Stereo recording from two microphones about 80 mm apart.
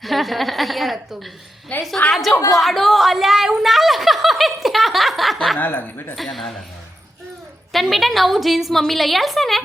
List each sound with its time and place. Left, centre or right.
0.0 s a woman's voice: centre
1.7 s speech: left
2.5 s a sound: centre
5.5 s speech: left
6.1 s a woman's voice: centre
7.7 s a woman's voice: centre